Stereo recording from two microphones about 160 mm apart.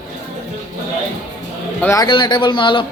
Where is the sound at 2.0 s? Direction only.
30° left (ahead or behind).